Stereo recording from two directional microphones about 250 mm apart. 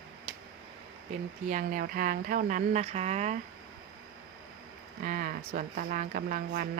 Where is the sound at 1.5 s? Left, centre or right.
Right.